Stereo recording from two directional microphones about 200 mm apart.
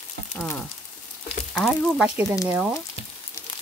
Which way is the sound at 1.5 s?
Centre (ahead or behind).